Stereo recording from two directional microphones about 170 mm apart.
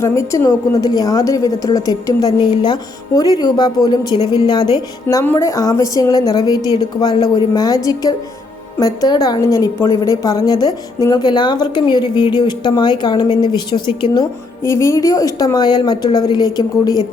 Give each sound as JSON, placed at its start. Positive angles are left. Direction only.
{"t": 0.0, "sound": "a woman's voice", "side_deg": 15}
{"t": 5.0, "sound": "a woman's voice", "side_deg": 15}